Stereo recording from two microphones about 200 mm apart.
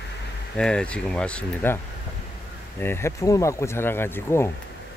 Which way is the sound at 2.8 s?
10° left (ahead or behind).